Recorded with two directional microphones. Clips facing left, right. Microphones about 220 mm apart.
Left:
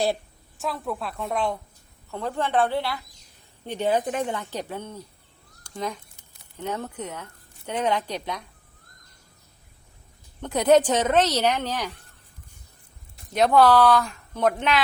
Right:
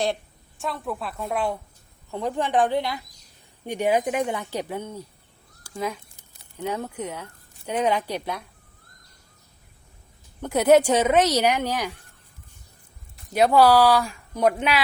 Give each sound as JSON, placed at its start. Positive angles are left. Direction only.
{"t": 0.6, "sound": "a woman's voice", "side_deg": 0}
{"t": 10.4, "sound": "a woman's voice", "side_deg": -10}
{"t": 13.3, "sound": "a woman's voice", "side_deg": -10}